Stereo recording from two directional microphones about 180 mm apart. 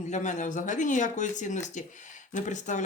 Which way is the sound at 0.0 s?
40° left (ahead or behind).